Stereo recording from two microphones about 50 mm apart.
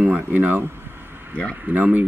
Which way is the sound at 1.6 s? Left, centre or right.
Right.